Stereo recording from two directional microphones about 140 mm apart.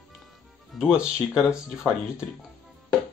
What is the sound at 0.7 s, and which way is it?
Speech, 5° right (ahead or behind).